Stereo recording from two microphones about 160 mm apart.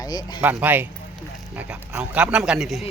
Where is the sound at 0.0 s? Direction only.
25° left (ahead or behind).